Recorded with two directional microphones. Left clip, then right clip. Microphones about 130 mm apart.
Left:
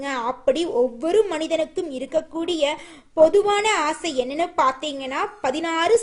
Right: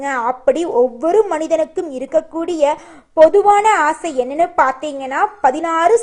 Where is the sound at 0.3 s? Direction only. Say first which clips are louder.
Right 5 dB; 20° left (ahead or behind).